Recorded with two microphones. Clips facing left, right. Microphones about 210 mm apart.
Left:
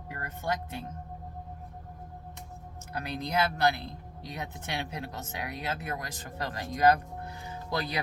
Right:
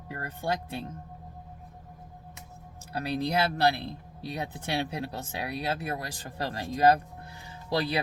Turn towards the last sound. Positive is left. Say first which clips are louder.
# right 4 dB
turn(degrees=-30)  # may be behind; listen again after turning